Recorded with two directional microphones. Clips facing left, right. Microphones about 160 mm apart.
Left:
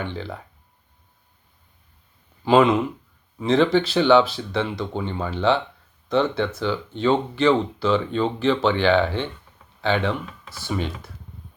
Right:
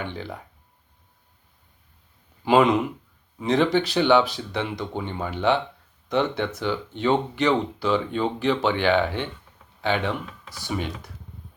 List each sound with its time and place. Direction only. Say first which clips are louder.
0.0 s speech: left 2 dB; 15° right (ahead or behind)
2.4 s speech: left 2 dB; 15° right (ahead or behind)